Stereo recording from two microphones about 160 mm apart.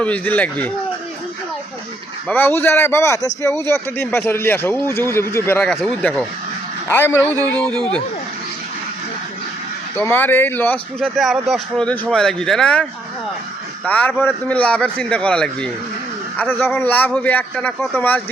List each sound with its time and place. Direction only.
0.0 s a man's voice: 10° left (ahead or behind)
2.2 s a man's voice: 10° left (ahead or behind)
7.6 s speech: 5° left (ahead or behind)
10.0 s a man's voice: 10° left (ahead or behind)
11.2 s a man's voice: centre (ahead or behind)